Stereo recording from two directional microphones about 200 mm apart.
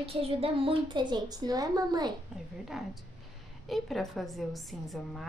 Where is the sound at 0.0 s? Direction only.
30° right (ahead or behind).